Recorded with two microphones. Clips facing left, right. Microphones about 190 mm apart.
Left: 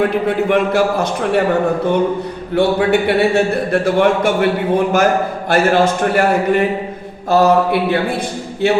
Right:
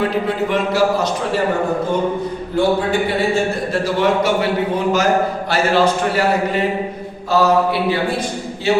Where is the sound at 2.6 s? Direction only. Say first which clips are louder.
Left 3 dB; 65° left (ahead or behind).